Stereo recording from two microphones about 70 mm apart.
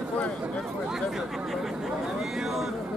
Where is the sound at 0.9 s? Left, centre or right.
Centre.